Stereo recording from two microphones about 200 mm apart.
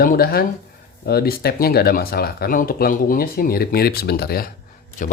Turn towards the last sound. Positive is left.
turn(degrees=40)  # may be behind; listen again after turning